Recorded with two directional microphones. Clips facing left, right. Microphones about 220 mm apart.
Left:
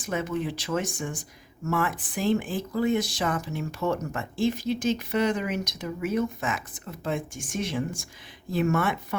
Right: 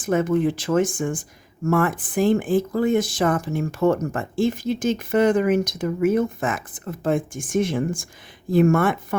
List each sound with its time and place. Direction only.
0.0 s speech: 50° right (ahead or behind)